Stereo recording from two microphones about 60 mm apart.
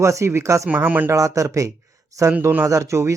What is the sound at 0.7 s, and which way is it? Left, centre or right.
Speech, right.